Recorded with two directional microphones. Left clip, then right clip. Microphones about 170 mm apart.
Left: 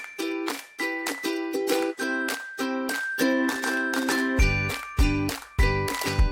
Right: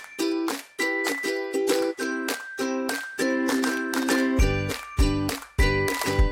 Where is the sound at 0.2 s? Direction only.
5° right (ahead or behind).